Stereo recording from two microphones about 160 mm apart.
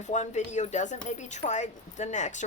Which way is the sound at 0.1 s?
45° left (ahead or behind).